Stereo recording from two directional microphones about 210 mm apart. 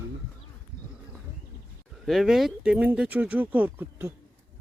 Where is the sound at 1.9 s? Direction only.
Centre (ahead or behind).